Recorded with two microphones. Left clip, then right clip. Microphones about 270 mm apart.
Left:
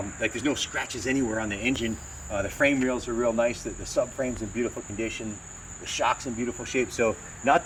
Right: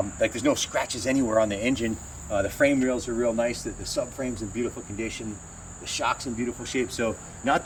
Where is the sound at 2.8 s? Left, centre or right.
Centre.